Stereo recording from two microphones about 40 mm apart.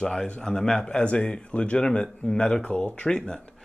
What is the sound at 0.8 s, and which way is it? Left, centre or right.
Speech, left.